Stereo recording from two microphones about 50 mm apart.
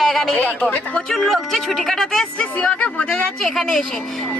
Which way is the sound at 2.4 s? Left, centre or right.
Left.